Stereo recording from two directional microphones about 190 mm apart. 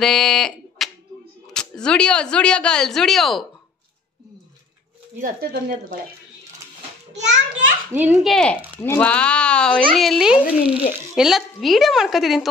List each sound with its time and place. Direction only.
0.0 s speech: 5° left (ahead or behind)
5.2 s speech: 55° right (ahead or behind)
7.2 s speech: 65° right (ahead or behind)
7.9 s speech: 5° right (ahead or behind)